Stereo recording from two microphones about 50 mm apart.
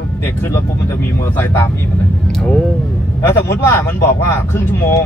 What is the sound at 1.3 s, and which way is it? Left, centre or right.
Speech, left.